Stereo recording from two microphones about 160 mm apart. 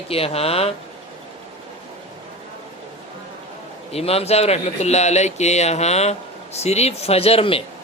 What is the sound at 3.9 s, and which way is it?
Speech, 40° left (ahead or behind).